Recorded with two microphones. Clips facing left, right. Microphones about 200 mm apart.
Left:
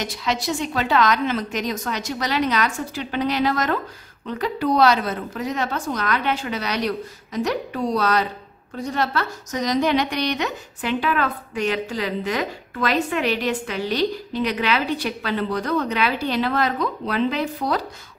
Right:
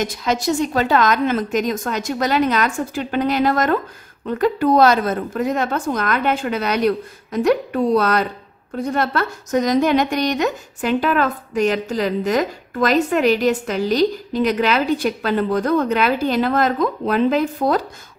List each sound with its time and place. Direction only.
0.0 s speech: 45° right (ahead or behind)